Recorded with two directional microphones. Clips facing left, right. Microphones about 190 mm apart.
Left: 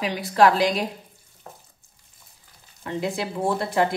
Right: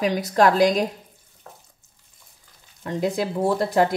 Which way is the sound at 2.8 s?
40° right (ahead or behind).